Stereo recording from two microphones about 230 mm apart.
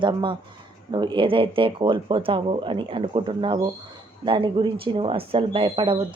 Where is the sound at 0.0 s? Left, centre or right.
Right.